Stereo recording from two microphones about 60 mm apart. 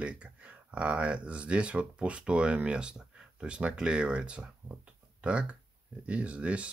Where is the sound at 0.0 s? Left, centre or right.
Right.